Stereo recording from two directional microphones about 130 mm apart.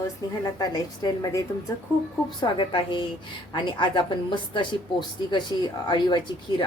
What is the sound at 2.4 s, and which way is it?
A woman's voice, 40° left (ahead or behind).